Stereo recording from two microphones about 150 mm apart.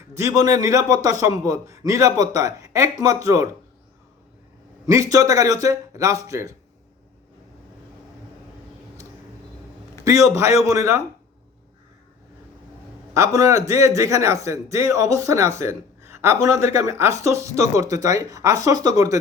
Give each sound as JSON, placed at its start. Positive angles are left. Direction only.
{"t": 0.2, "sound": "speech", "side_deg": -20}
{"t": 4.9, "sound": "speech", "side_deg": -20}
{"t": 10.0, "sound": "speech", "side_deg": -20}
{"t": 13.1, "sound": "speech", "side_deg": -20}